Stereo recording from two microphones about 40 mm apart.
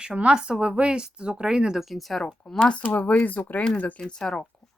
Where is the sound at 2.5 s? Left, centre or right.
Centre.